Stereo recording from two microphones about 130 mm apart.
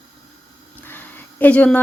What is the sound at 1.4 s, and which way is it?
Speech, 10° left (ahead or behind).